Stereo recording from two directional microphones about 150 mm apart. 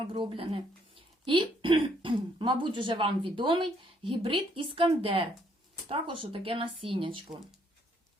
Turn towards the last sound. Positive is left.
turn(degrees=-35)  # may be behind; listen again after turning